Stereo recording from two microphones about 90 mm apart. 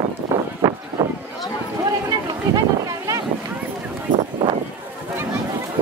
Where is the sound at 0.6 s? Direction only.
25° right (ahead or behind).